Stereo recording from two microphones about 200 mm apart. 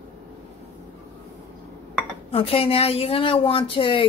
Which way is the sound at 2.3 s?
30° left (ahead or behind).